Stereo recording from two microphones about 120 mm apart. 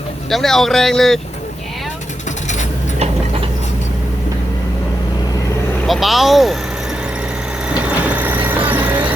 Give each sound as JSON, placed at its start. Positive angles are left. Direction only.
{"t": 0.3, "sound": "speech", "side_deg": 0}
{"t": 5.8, "sound": "speech", "side_deg": 0}
{"t": 7.7, "sound": "vehicle", "side_deg": -10}